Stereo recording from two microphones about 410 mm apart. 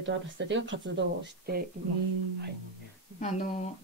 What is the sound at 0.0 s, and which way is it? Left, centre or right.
Speech, right.